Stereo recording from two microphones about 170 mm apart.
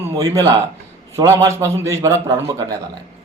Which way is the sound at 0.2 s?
20° right (ahead or behind).